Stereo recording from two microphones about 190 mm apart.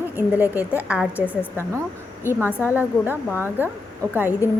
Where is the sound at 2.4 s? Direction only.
10° left (ahead or behind).